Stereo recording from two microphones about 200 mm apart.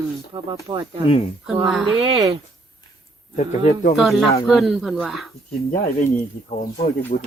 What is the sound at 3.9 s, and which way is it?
Speech, centre (ahead or behind).